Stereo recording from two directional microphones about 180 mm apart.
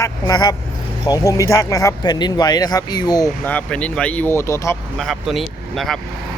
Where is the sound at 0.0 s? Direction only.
20° left (ahead or behind).